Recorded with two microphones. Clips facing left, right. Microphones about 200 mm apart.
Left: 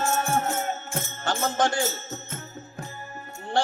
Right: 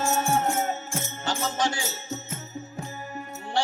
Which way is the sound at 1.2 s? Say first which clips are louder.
Left 3 dB; 55° left (ahead or behind).